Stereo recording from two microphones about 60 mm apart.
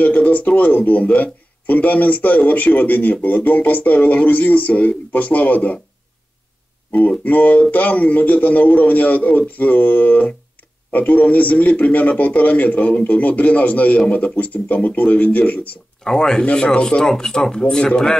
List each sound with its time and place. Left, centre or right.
0.0 s speech: left
6.9 s speech: left
16.0 s speech: centre